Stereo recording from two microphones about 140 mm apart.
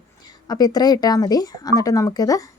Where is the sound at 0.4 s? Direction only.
30° left (ahead or behind).